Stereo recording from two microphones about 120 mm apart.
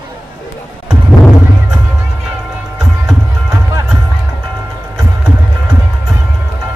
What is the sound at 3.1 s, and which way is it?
Music, 25° right (ahead or behind).